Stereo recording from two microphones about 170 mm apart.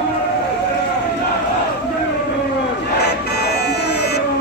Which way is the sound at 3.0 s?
70° left (ahead or behind).